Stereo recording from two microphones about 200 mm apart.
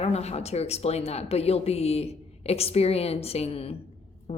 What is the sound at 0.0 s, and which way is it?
Speech, 30° left (ahead or behind).